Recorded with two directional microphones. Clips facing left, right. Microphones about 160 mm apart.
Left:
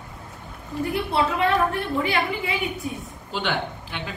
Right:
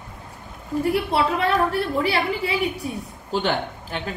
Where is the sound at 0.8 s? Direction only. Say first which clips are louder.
Right 2 dB; 35° right (ahead or behind).